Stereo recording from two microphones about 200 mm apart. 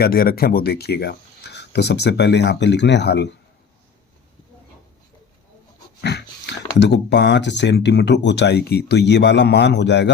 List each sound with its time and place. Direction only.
0.0 s speech: 50° left (ahead or behind)
6.0 s speech: 55° left (ahead or behind)